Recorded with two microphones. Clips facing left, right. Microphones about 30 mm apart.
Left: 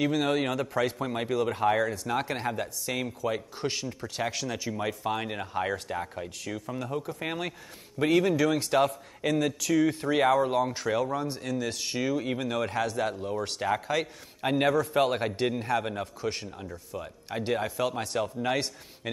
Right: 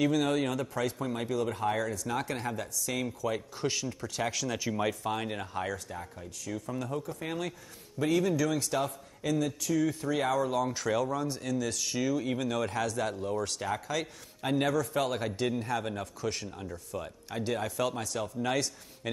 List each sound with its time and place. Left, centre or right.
0.0 s speech: left
0.7 s speech: left
2.9 s speech: left
4.5 s speech: centre
5.7 s a man's voice: left
6.5 s speech: left
7.2 s a man's voice: left
10.2 s speech: left; by 13.4 s centre
13.4 s speech: left
14.7 s speech: left
16.4 s speech: centre
17.3 s speech: left